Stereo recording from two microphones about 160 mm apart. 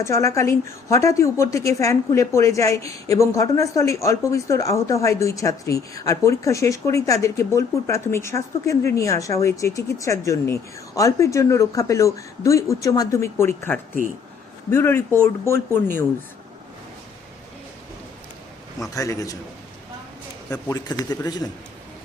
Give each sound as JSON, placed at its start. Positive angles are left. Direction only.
{"t": 0.0, "sound": "a woman's voice", "side_deg": 20}
{"t": 14.7, "sound": "speech", "side_deg": 15}
{"t": 18.9, "sound": "a woman's voice", "side_deg": 20}
{"t": 20.5, "sound": "a woman's voice", "side_deg": 25}